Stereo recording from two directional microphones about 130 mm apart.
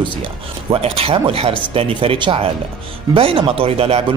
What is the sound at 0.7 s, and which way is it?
A man's voice, 50° right (ahead or behind).